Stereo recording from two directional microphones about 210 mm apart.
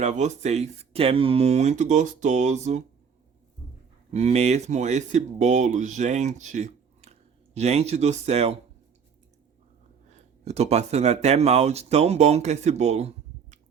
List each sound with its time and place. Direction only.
0.0 s speech: 35° right (ahead or behind)
4.1 s speech: 30° right (ahead or behind)
10.1 s speech: 30° right (ahead or behind)